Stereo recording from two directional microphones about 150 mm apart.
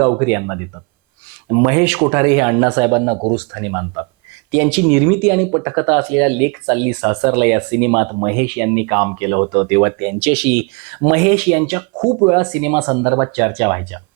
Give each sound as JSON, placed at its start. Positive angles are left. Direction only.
{"t": 0.0, "sound": "speech", "side_deg": -20}
{"t": 1.7, "sound": "speech", "side_deg": -15}